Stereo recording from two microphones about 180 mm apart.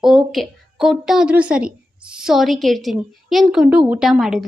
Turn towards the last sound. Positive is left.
turn(degrees=0)  # may be behind; listen again after turning